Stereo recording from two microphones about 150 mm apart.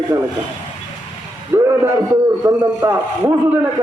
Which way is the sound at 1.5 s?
20° right (ahead or behind).